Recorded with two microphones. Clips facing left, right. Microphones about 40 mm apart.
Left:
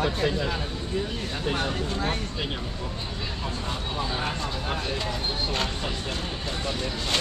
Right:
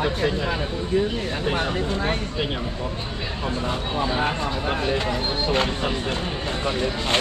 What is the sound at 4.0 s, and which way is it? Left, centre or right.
Speech, right.